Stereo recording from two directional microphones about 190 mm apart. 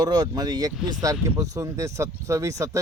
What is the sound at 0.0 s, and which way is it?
Speech, 20° right (ahead or behind).